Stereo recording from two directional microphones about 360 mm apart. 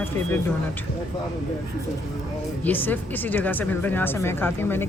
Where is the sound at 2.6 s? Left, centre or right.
Centre.